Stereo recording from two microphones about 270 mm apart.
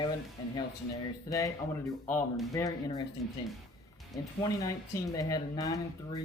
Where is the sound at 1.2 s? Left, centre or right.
Centre.